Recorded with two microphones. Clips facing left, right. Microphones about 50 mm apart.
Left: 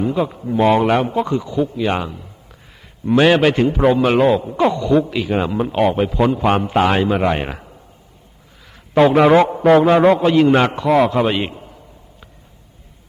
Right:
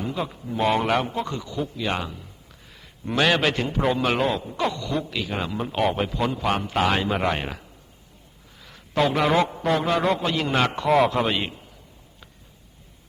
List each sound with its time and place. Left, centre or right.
0.0 s speech: centre
0.7 s speech: centre
0.9 s a man's voice: centre
4.6 s a man's voice: left
7.1 s speech: centre
7.3 s a man's voice: left
9.0 s a man's voice: left
9.7 s a man's voice: left
10.2 s a man's voice: left
10.8 s speech: centre
11.3 s a man's voice: left